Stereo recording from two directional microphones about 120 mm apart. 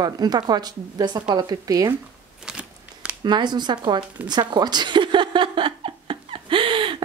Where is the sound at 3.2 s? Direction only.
40° right (ahead or behind).